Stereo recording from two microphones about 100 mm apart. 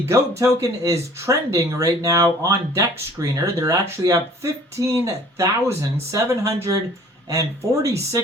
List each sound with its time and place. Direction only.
0.1 s speech: 30° right (ahead or behind)